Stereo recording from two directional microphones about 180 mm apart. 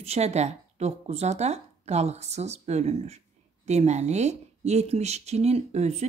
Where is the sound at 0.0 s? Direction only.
35° right (ahead or behind).